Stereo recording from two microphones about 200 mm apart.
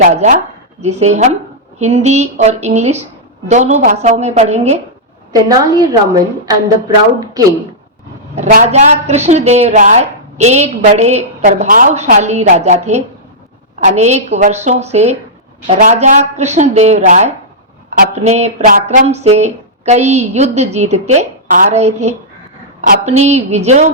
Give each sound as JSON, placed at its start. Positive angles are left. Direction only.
{"t": 0.1, "sound": "a woman's voice", "side_deg": -35}
{"t": 5.3, "sound": "a woman's voice", "side_deg": -20}
{"t": 8.4, "sound": "a woman's voice", "side_deg": -35}